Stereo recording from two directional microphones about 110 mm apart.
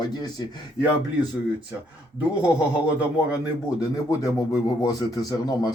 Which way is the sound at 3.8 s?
35° left (ahead or behind).